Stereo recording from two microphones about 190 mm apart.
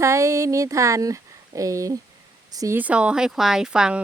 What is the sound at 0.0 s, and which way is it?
Speech, 15° right (ahead or behind).